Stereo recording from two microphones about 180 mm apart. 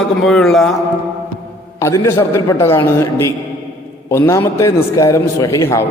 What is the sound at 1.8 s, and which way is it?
A man's voice, 15° left (ahead or behind).